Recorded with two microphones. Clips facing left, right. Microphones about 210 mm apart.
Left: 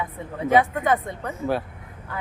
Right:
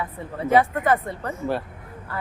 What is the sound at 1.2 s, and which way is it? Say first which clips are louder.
Speech: left 1 dB; centre (ahead or behind).